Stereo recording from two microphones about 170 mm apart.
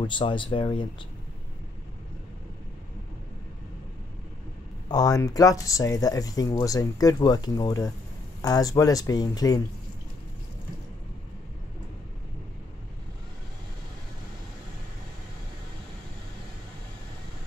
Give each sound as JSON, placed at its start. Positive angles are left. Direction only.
{"t": 0.0, "sound": "speech", "side_deg": 30}
{"t": 4.8, "sound": "speech", "side_deg": 25}